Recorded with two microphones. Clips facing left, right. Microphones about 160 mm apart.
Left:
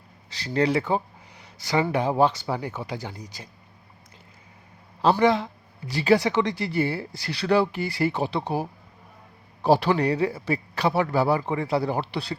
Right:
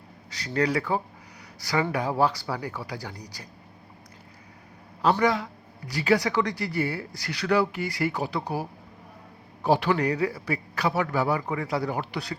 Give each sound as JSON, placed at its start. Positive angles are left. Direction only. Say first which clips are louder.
{"t": 0.3, "sound": "a man's voice", "louder": "left 3 dB", "side_deg": 30}
{"t": 5.2, "sound": "a man's voice", "louder": "left 4 dB", "side_deg": 25}